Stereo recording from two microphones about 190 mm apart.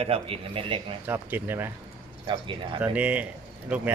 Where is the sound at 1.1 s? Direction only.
10° right (ahead or behind).